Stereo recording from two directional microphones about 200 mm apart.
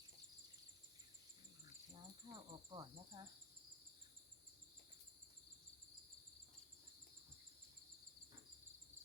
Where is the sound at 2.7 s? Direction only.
25° right (ahead or behind).